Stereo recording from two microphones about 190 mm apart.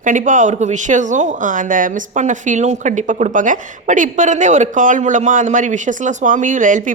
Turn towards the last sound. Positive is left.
turn(degrees=-45)  # may be behind; listen again after turning